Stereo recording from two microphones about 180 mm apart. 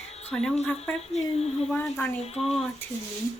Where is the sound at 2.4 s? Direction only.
Centre (ahead or behind).